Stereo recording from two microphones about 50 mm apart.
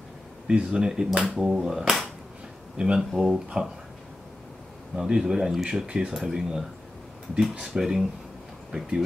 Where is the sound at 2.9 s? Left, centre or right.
Centre.